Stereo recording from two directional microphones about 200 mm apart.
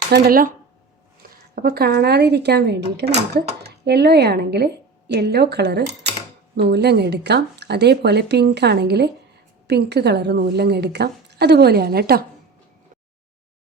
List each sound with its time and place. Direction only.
0.1 s speech: 45° right (ahead or behind)
1.5 s speech: 50° right (ahead or behind)